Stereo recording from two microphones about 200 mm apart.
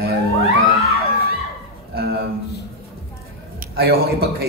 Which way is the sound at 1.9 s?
50° right (ahead or behind).